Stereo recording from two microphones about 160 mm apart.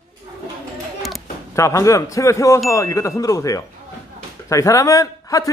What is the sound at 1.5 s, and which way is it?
A man's voice, 20° left (ahead or behind).